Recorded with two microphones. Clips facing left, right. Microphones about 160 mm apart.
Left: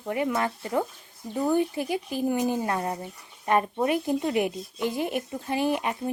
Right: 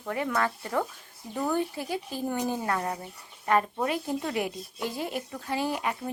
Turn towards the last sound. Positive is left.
turn(degrees=20)  # may be behind; listen again after turning